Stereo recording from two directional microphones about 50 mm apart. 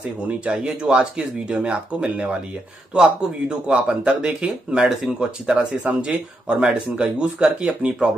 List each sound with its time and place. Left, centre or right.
0.6 s speech: centre